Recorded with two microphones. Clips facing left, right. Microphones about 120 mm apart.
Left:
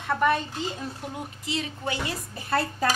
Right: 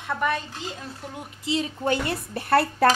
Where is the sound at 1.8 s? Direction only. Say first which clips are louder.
Right 6 dB; 55° right (ahead or behind).